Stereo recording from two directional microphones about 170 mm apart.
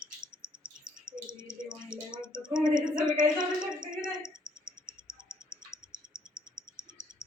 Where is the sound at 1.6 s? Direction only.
5° right (ahead or behind).